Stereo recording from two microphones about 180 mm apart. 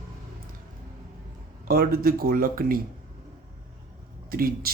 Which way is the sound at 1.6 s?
55° right (ahead or behind).